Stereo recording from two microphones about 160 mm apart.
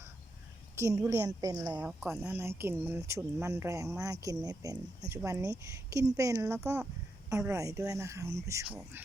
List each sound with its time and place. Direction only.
0.8 s speech: 20° right (ahead or behind)
1.8 s speech: 5° right (ahead or behind)